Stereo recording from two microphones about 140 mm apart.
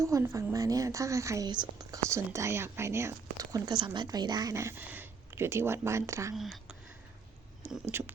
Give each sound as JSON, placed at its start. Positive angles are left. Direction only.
{"t": 0.0, "sound": "speech", "side_deg": -20}
{"t": 6.3, "sound": "speech", "side_deg": 0}
{"t": 7.9, "sound": "speech", "side_deg": -15}